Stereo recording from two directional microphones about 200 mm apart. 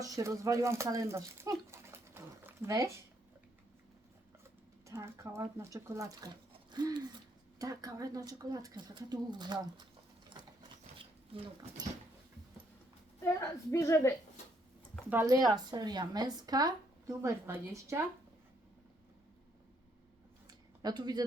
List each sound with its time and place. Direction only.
0.0 s a child's voice: 15° right (ahead or behind)
4.9 s speech: 10° right (ahead or behind)
10.2 s sewing machine: 20° right (ahead or behind)
13.2 s a woman's voice: 15° left (ahead or behind)
15.1 s speech: 15° right (ahead or behind)
20.5 s a sound: 20° right (ahead or behind)